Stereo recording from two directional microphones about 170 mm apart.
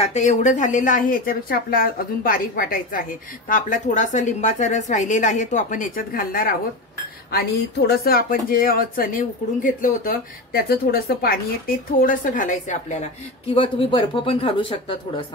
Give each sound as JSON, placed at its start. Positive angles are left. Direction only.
{"t": 0.0, "sound": "a woman's voice", "side_deg": 40}
{"t": 13.6, "sound": "speech", "side_deg": 30}